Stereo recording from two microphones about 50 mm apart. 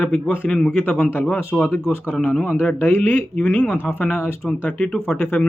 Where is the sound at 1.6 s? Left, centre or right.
Left.